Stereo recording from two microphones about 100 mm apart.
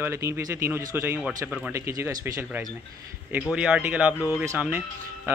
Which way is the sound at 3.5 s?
10° right (ahead or behind).